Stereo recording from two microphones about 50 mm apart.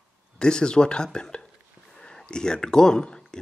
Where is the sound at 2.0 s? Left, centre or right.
Centre.